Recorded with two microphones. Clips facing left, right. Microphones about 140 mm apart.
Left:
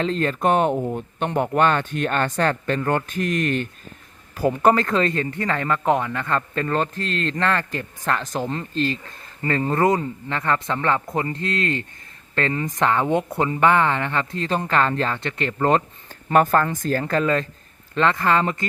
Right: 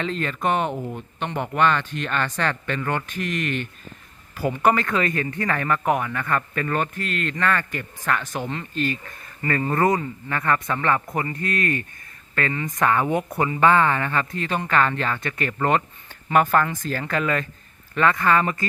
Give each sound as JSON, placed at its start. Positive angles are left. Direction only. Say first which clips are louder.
{"t": 0.0, "sound": "speech", "louder": "left 4 dB", "side_deg": 35}